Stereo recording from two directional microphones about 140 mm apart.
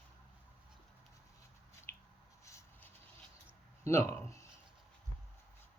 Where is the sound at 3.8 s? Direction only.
20° left (ahead or behind).